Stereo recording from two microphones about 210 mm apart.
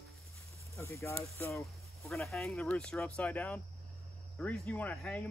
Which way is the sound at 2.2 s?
Centre (ahead or behind).